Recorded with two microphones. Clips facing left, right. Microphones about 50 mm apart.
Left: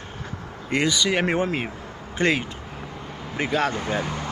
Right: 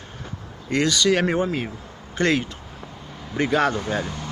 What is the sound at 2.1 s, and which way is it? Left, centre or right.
Speech, centre.